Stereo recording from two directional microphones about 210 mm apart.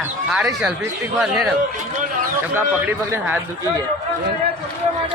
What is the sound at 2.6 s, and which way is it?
Speech, 10° right (ahead or behind).